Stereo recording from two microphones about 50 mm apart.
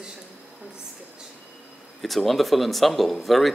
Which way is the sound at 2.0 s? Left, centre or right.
Centre.